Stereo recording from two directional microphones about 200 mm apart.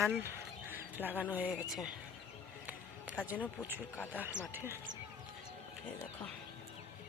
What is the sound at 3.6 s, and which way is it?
Speech, 10° right (ahead or behind).